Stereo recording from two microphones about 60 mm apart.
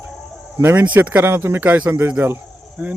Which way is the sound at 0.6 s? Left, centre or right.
Right.